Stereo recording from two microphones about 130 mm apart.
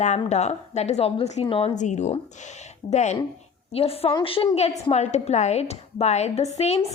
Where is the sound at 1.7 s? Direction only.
65° left (ahead or behind).